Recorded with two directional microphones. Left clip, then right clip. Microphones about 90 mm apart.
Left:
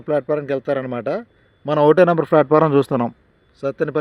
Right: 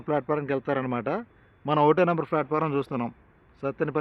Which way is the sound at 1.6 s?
65° left (ahead or behind).